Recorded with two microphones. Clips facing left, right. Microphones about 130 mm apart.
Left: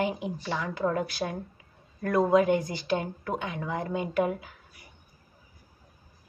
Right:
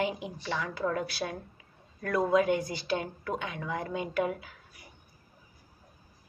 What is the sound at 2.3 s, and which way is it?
A woman's voice, 45° left (ahead or behind).